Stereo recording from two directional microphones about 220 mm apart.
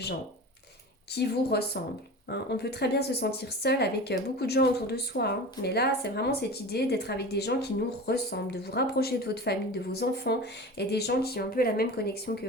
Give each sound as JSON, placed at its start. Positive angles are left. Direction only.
{"t": 1.1, "sound": "speech", "side_deg": 45}